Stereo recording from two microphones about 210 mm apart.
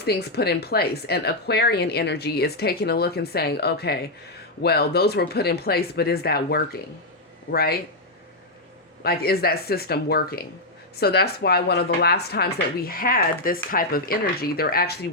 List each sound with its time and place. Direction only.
0.0 s speech: 50° left (ahead or behind)
9.0 s speech: 45° left (ahead or behind)